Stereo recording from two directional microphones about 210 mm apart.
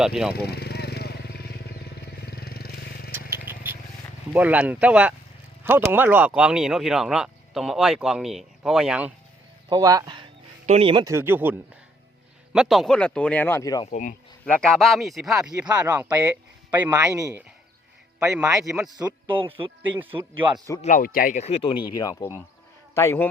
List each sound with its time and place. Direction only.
0.0 s speech: centre (ahead or behind)
0.3 s vehicle: 50° left (ahead or behind)
3.1 s vehicle: 10° right (ahead or behind)
4.4 s a man's voice: 5° right (ahead or behind)
9.6 s a man's voice: 20° right (ahead or behind)
12.5 s speech: centre (ahead or behind); by 13.9 s 15° left (ahead or behind)
13.9 s speech: 40° left (ahead or behind)
14.4 s a man's voice: 5° left (ahead or behind)
19.4 s speech: 25° right (ahead or behind)
20.8 s speech: 40° left (ahead or behind); by 23.3 s 10° left (ahead or behind)